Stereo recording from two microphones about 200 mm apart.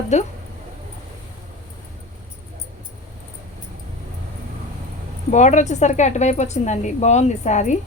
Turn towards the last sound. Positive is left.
turn(degrees=35)  # may be behind; listen again after turning